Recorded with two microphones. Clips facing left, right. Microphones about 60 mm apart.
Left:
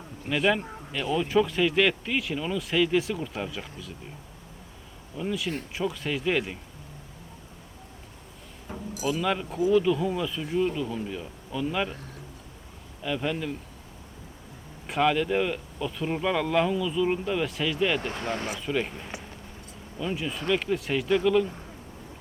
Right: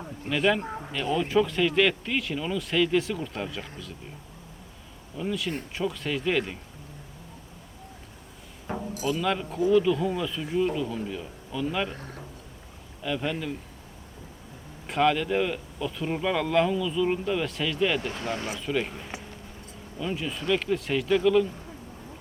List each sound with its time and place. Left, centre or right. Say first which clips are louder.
0.3 s speech: even; centre
0.6 s a sound: right 5 dB; right
1.1 s speech: even; centre
5.1 s speech: even; centre
8.7 s chink: right 6 dB; right
9.0 s speech: even; centre
11.9 s speech: right 3 dB; right
13.0 s speech: even; centre
14.8 s speech: even; centre
18.2 s speech: even; left
18.6 s speech: even; centre